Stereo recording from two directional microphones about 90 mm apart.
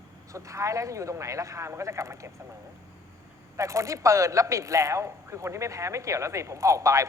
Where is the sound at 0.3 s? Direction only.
35° right (ahead or behind).